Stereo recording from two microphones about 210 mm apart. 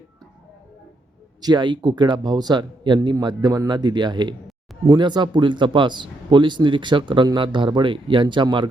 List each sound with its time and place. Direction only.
1.4 s speech: 20° right (ahead or behind)